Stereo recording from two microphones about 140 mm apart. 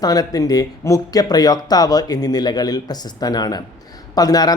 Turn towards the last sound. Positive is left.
turn(degrees=30)  # may be behind; listen again after turning